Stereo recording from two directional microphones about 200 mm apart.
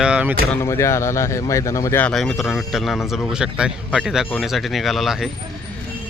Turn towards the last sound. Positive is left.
turn(degrees=0)  # may be behind; listen again after turning